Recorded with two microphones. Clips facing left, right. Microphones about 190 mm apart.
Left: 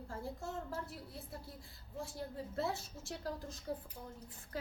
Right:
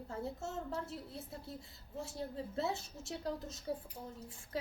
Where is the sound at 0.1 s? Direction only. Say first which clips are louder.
Right 3 dB; 25° right (ahead or behind).